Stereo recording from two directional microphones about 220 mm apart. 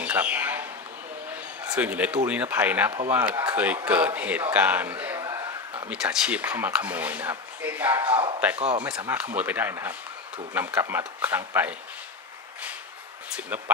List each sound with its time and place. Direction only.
0.0 s a sound: 10° right (ahead or behind)
1.7 s speech: 10° right (ahead or behind)
8.5 s speech: 30° right (ahead or behind)
8.8 s speech: 5° right (ahead or behind)